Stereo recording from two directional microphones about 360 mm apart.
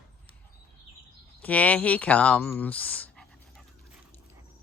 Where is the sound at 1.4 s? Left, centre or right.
Centre.